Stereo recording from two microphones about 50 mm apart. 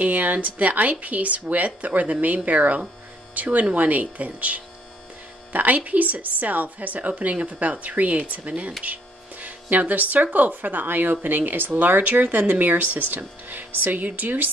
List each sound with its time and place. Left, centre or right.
0.0 s speech: right